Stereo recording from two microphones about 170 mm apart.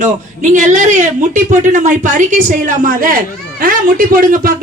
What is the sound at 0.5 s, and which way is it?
A woman's voice, 45° right (ahead or behind).